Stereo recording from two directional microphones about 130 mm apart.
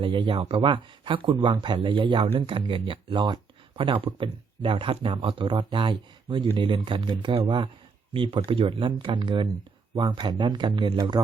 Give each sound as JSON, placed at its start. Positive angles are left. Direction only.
{"t": 0.0, "sound": "speech", "side_deg": -40}